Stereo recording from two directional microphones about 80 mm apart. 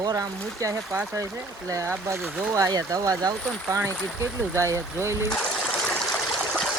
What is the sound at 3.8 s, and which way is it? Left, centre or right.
Speech, right.